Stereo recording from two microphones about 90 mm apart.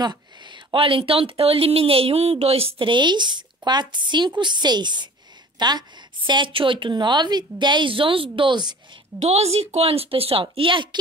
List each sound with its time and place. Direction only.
0.0 s a woman's voice: 55° right (ahead or behind)
9.1 s a woman's voice: 20° right (ahead or behind)
9.8 s speech: 90° right; by 11.0 s 65° right (ahead or behind)